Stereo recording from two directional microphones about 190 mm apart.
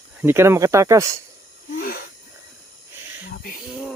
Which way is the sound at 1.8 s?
50° left (ahead or behind).